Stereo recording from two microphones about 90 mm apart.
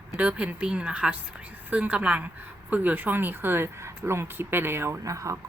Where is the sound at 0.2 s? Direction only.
15° right (ahead or behind).